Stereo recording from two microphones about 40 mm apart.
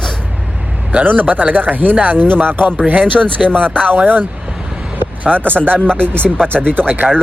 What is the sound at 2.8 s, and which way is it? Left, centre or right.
Speech, right.